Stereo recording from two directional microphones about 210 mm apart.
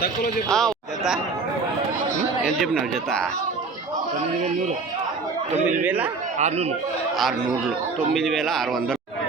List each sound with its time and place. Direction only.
0.5 s speech: centre (ahead or behind)
2.6 s a man's voice: centre (ahead or behind)
5.8 s a man's voice: 10° right (ahead or behind)
6.4 s speech: 30° right (ahead or behind)
8.1 s a man's voice: centre (ahead or behind)